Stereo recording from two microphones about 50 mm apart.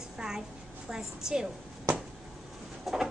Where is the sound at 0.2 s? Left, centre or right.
Centre.